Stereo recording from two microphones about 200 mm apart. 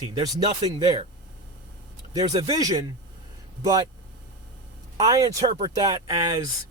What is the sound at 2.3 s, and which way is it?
Speech, 25° right (ahead or behind).